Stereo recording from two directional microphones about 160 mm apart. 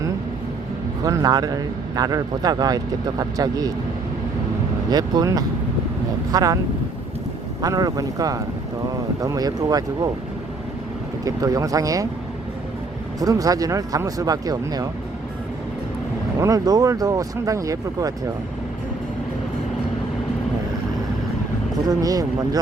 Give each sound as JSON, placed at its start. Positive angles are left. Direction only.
{"t": 1.0, "sound": "a man's voice", "side_deg": -25}
{"t": 4.9, "sound": "a man's voice", "side_deg": -25}
{"t": 7.6, "sound": "a man's voice", "side_deg": -25}
{"t": 11.3, "sound": "a man's voice", "side_deg": -20}
{"t": 13.1, "sound": "a man's voice", "side_deg": -20}
{"t": 16.4, "sound": "a man's voice", "side_deg": -20}
{"t": 21.8, "sound": "a man's voice", "side_deg": -20}